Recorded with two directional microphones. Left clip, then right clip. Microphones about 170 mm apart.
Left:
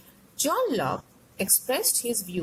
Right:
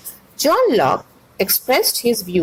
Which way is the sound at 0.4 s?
30° right (ahead or behind).